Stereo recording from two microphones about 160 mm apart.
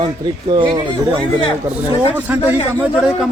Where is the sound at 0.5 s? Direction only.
35° right (ahead or behind).